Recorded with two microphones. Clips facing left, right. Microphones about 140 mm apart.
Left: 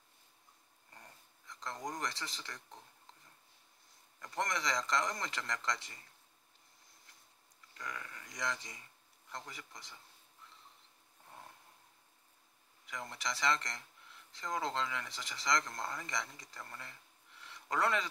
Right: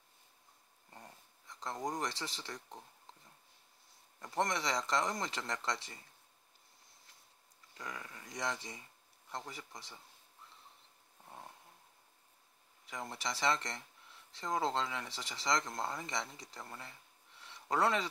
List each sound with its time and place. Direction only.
1.8 s speech: 30° right (ahead or behind)
4.2 s speech: 25° right (ahead or behind)
7.8 s a sound: 20° right (ahead or behind)
9.3 s speech: 25° right (ahead or behind)
13.1 s speech: 30° right (ahead or behind)
17.4 s a sound: 25° right (ahead or behind)